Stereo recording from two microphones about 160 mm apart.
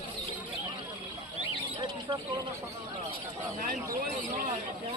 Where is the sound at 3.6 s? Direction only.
60° right (ahead or behind).